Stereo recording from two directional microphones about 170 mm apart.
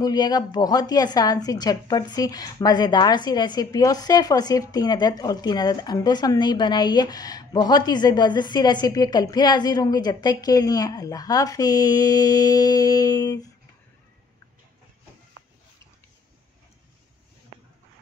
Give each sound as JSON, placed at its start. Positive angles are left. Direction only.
{"t": 0.0, "sound": "a woman's voice", "side_deg": 25}